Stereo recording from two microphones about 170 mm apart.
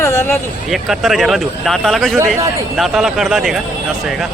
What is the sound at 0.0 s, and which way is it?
Vehicle, 15° left (ahead or behind).